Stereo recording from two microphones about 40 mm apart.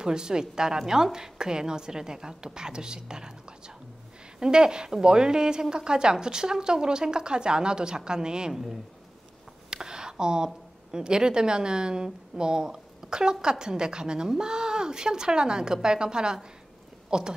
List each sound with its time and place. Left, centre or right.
0.0 s a woman's voice: centre
9.7 s a woman's voice: centre